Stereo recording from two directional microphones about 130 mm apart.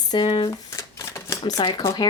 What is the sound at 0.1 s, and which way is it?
Speech, 40° left (ahead or behind).